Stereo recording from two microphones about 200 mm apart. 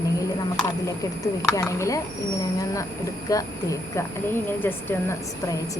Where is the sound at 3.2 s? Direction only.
15° left (ahead or behind).